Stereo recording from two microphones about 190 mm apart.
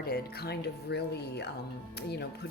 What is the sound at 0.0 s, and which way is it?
Speech, 55° left (ahead or behind).